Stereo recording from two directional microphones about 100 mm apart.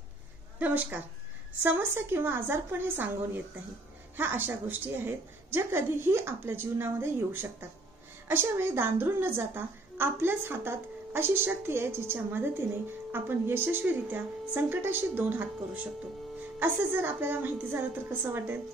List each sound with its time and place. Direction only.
0.6 s a woman's voice: 15° right (ahead or behind)